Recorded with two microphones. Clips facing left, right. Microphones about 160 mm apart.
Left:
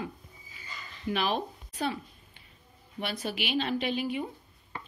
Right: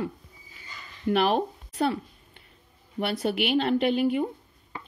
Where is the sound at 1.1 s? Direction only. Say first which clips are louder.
Right 7 dB; 65° right (ahead or behind).